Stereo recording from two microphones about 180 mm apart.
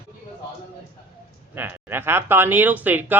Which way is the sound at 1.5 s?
10° right (ahead or behind).